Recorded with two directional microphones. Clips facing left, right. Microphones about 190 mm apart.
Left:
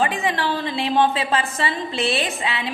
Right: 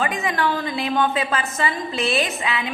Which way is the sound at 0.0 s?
30° left (ahead or behind).